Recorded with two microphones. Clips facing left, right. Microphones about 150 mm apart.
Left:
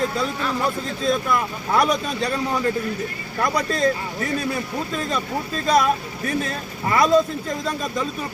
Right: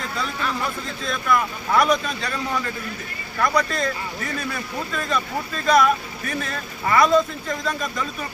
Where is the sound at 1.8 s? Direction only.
30° left (ahead or behind).